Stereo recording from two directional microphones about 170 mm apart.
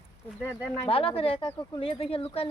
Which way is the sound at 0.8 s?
35° left (ahead or behind).